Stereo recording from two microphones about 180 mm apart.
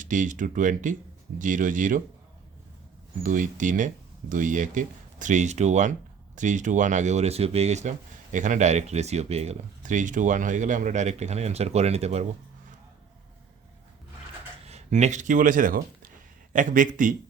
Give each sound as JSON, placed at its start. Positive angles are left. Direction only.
{"t": 0.0, "sound": "speech", "side_deg": -45}
{"t": 3.2, "sound": "speech", "side_deg": -45}
{"t": 14.7, "sound": "speech", "side_deg": -40}